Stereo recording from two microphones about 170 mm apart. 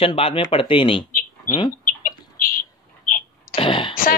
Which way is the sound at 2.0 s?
55° left (ahead or behind).